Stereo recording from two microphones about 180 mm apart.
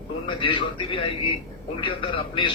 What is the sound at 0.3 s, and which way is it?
A man's voice, 25° left (ahead or behind).